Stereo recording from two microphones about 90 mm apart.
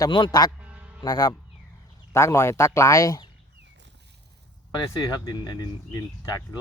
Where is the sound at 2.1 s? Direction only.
30° left (ahead or behind).